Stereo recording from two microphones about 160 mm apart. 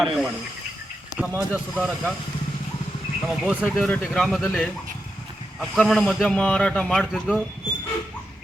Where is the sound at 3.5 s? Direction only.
Centre (ahead or behind).